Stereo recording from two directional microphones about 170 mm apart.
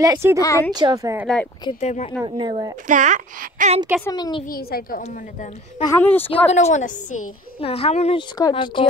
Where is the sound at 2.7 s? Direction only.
50° right (ahead or behind).